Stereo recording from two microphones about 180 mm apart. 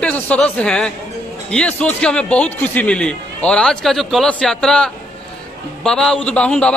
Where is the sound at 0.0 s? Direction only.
5° left (ahead or behind).